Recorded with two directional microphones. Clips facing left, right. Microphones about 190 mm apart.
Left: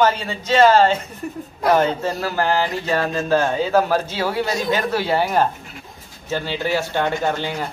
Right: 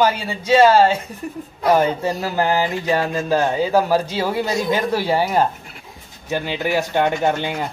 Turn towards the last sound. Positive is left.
turn(degrees=-15)  # may be behind; listen again after turning